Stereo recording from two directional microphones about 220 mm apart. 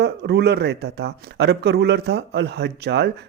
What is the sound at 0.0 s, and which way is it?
Speech, 50° right (ahead or behind).